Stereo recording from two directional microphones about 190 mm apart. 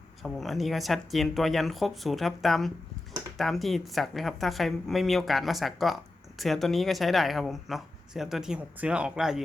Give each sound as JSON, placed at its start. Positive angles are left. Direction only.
{"t": 0.2, "sound": "speech", "side_deg": 0}